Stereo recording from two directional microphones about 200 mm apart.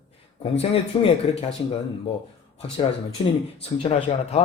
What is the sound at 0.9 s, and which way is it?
Speech, 25° left (ahead or behind).